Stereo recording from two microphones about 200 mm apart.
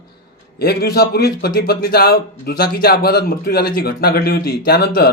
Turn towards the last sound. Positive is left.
turn(degrees=50)  # may be behind; listen again after turning